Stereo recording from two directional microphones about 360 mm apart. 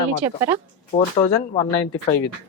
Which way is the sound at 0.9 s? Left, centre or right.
Centre.